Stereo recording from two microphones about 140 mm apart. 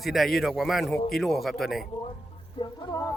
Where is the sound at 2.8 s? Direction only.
25° left (ahead or behind).